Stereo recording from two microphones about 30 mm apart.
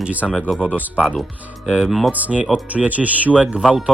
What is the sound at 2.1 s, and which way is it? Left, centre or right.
Speech, right.